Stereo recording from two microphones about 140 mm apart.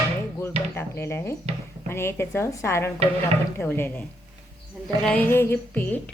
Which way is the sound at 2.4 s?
20° left (ahead or behind).